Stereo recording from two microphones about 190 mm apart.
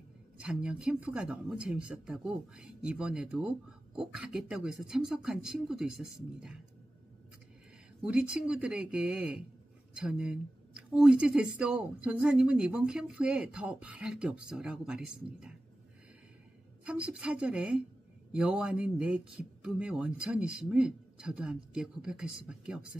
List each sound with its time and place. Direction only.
0.4 s speech: 5° right (ahead or behind)
8.0 s speech: 5° right (ahead or behind)
16.8 s speech: 5° right (ahead or behind)